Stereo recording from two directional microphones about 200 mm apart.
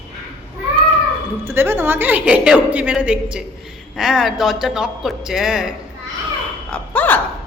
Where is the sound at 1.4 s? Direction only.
10° right (ahead or behind).